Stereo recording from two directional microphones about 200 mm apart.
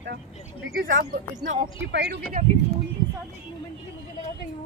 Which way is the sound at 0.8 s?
50° right (ahead or behind).